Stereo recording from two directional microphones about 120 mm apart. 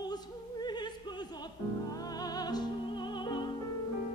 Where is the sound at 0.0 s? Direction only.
35° left (ahead or behind).